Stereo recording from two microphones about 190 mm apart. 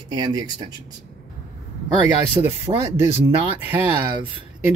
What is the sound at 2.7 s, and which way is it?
Speech, 20° right (ahead or behind).